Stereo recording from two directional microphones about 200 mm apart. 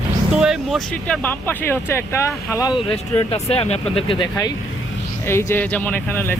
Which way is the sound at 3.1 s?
30° left (ahead or behind).